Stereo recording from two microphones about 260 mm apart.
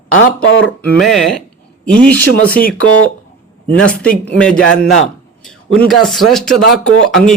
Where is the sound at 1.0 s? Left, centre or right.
Centre.